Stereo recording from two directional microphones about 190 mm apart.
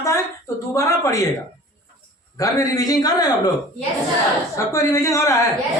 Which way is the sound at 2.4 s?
20° left (ahead or behind).